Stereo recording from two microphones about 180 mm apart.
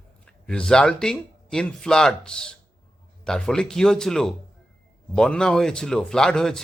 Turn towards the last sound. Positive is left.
turn(degrees=5)  # may be behind; listen again after turning